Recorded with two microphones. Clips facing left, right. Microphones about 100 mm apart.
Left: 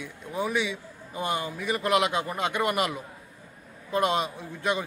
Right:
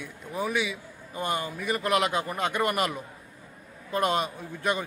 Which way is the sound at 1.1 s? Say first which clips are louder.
Even; 15° left (ahead or behind).